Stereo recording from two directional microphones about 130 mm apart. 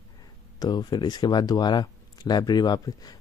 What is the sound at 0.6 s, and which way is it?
Speech, 30° left (ahead or behind).